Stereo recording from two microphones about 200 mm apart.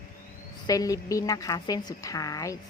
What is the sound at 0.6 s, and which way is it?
A woman's voice, 15° left (ahead or behind).